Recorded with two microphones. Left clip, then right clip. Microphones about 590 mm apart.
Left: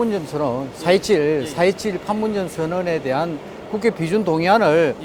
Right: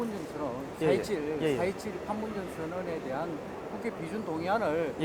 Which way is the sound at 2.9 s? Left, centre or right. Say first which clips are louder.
Left 14 dB; left.